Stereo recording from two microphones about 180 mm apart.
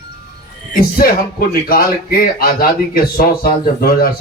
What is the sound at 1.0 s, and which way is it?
Speech, 55° left (ahead or behind).